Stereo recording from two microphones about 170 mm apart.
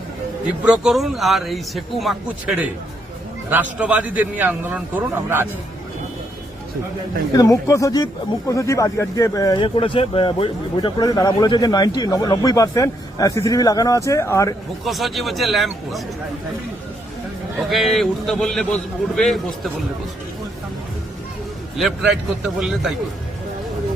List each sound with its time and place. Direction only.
0.6 s a man's voice: 5° right (ahead or behind)
7.3 s speech: 20° left (ahead or behind)
14.8 s a man's voice: centre (ahead or behind)
17.6 s a man's voice: centre (ahead or behind)
21.8 s a man's voice: centre (ahead or behind)